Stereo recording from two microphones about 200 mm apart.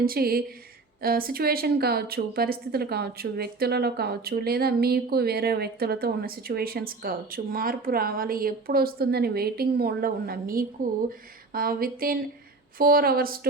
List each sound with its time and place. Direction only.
0.0 s a woman's voice: 50° right (ahead or behind)